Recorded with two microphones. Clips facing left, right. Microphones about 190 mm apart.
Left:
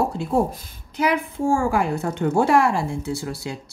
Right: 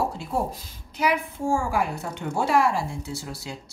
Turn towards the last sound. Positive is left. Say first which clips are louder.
# left 7 dB
turn(degrees=60)  # may be behind; listen again after turning